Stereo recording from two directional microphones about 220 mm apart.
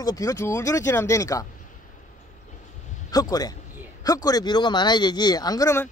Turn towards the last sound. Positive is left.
turn(degrees=10)  # may be behind; listen again after turning